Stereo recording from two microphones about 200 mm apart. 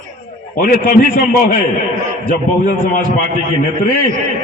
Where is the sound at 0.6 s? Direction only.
45° left (ahead or behind).